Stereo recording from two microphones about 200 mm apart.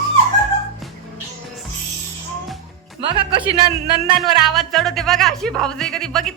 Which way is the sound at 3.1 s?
25° right (ahead or behind).